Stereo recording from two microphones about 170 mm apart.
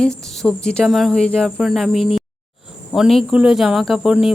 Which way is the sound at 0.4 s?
5° left (ahead or behind).